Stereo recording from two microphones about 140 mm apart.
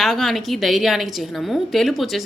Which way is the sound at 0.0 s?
Centre (ahead or behind).